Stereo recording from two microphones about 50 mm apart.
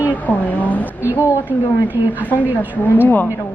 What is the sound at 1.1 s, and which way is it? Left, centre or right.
Speech, left.